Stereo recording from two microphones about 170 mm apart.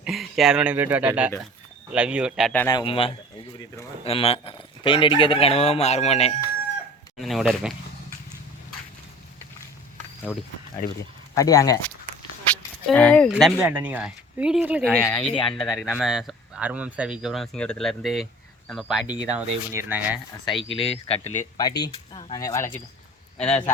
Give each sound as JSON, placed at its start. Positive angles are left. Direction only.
{"t": 0.0, "sound": "speech", "side_deg": 0}
{"t": 2.5, "sound": "speech", "side_deg": 10}
{"t": 2.7, "sound": "speech", "side_deg": 30}
{"t": 7.2, "sound": "speech", "side_deg": 0}
{"t": 10.3, "sound": "speech", "side_deg": -5}
{"t": 11.3, "sound": "speech", "side_deg": 20}
{"t": 12.9, "sound": "speech", "side_deg": 5}
{"t": 13.3, "sound": "speech", "side_deg": -10}
{"t": 15.0, "sound": "speech", "side_deg": 15}
{"t": 15.3, "sound": "speech", "side_deg": 30}
{"t": 15.8, "sound": "speech", "side_deg": 0}
{"t": 20.6, "sound": "speech", "side_deg": 35}
{"t": 21.3, "sound": "speech", "side_deg": 25}